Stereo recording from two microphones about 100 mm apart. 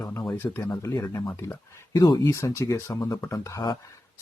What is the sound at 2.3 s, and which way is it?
Speech, 30° left (ahead or behind).